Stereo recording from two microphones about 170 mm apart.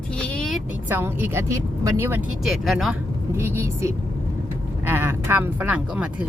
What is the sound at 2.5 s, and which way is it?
Speech, centre (ahead or behind).